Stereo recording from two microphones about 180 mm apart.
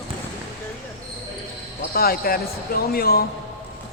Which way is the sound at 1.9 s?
55° left (ahead or behind).